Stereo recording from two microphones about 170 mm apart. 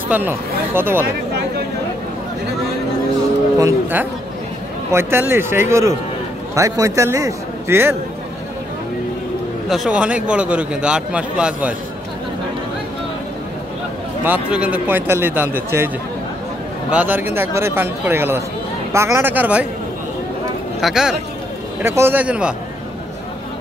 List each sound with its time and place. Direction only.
0.1 s a man's voice: 10° right (ahead or behind)
3.5 s a man's voice: 15° right (ahead or behind)
9.7 s a man's voice: 5° right (ahead or behind)
14.2 s a man's voice: 10° right (ahead or behind)
16.9 s a man's voice: 10° right (ahead or behind)
20.8 s speech: 5° right (ahead or behind)
21.8 s a man's voice: 15° right (ahead or behind)